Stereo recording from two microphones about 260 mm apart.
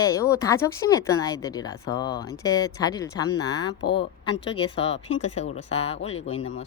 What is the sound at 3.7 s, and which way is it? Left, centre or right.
Speech, left.